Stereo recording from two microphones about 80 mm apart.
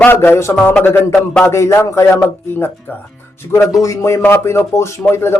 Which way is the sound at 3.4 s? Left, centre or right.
Left.